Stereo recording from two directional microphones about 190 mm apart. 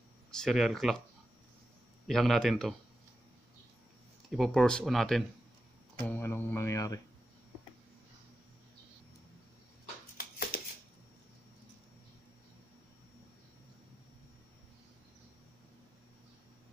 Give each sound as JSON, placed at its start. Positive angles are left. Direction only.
{"t": 0.3, "sound": "speech", "side_deg": 0}
{"t": 2.0, "sound": "speech", "side_deg": 0}
{"t": 4.3, "sound": "speech", "side_deg": 0}
{"t": 10.1, "sound": "a sound", "side_deg": 50}